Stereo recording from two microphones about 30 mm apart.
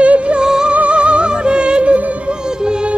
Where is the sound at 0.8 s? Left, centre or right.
Right.